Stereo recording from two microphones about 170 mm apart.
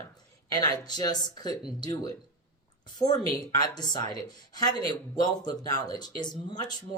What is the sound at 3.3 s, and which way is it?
Speech, 25° left (ahead or behind).